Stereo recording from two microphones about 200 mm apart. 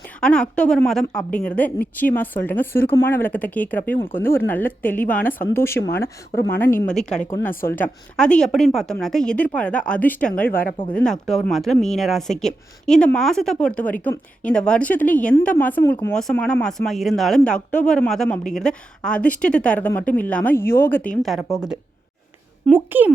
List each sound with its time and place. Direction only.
0.2 s a woman's voice: 5° left (ahead or behind)
21.2 s speech: centre (ahead or behind)